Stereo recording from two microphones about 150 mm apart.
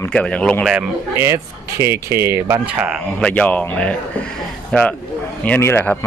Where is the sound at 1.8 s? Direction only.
20° right (ahead or behind).